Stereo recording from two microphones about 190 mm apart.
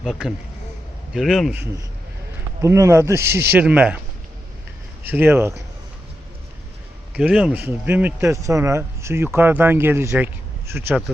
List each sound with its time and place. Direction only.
0.0 s a man's voice: centre (ahead or behind)
2.6 s a man's voice: 15° right (ahead or behind)
5.0 s a man's voice: 10° right (ahead or behind)
7.2 s a man's voice: 5° right (ahead or behind)